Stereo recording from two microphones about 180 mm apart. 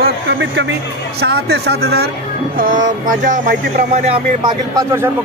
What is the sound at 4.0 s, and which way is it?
Speech, 30° right (ahead or behind).